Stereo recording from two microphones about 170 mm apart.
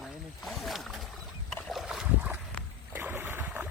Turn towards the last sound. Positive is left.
turn(degrees=-10)  # may be behind; listen again after turning